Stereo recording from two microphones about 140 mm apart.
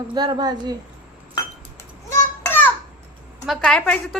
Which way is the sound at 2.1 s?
15° left (ahead or behind).